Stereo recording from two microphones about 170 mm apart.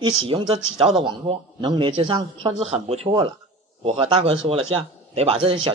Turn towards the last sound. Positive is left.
turn(degrees=-30)  # may be behind; listen again after turning